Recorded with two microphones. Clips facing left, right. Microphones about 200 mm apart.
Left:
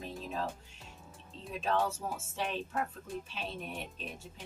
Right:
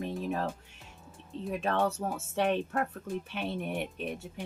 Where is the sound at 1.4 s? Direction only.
60° right (ahead or behind).